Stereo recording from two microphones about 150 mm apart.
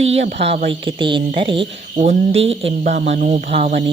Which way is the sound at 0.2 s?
45° right (ahead or behind).